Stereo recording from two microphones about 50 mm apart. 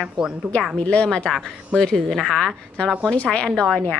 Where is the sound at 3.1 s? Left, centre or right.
Left.